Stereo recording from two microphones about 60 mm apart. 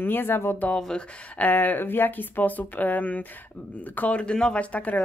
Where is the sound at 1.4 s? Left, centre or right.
Left.